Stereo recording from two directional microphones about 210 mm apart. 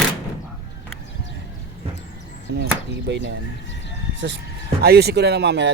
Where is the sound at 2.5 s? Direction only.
55° right (ahead or behind).